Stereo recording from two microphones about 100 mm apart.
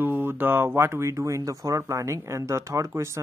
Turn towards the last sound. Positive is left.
turn(degrees=-30)  # may be behind; listen again after turning